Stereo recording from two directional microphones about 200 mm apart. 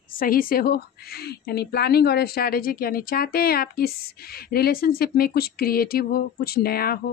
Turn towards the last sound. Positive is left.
turn(degrees=50)  # may be behind; listen again after turning